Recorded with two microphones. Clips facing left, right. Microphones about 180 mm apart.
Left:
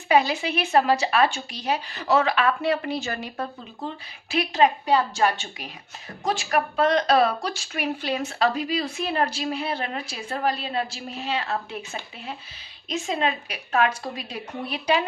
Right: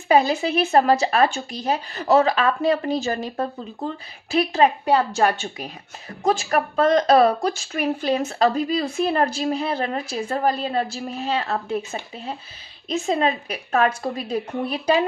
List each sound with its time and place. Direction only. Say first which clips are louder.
0.1 s a woman's voice: right 3 dB; 40° right (ahead or behind)
13.1 s a woman's voice: right 5 dB; 45° right (ahead or behind)